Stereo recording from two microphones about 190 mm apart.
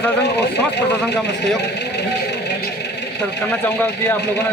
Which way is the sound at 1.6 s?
60° left (ahead or behind).